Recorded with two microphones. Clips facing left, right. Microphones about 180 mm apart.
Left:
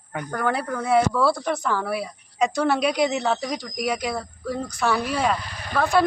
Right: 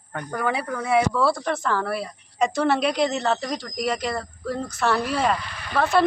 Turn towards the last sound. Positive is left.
turn(degrees=-5)  # may be behind; listen again after turning